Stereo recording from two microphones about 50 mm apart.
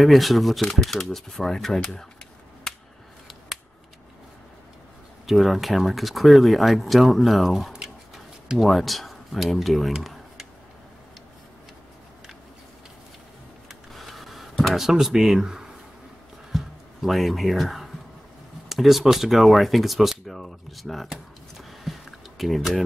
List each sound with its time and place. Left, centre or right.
0.0 s speech: centre
5.2 s speech: centre
7.7 s tick-tock: centre
13.7 s a sound: centre
18.7 s speech: centre
21.5 s a sound: centre
22.4 s speech: centre